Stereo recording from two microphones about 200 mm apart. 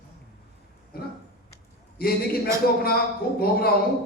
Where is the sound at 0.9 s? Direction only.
50° left (ahead or behind).